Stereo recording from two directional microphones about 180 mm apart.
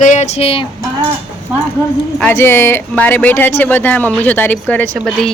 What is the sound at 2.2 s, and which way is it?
A woman's voice, 10° left (ahead or behind).